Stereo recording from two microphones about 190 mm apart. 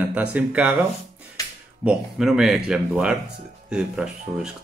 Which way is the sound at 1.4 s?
20° left (ahead or behind).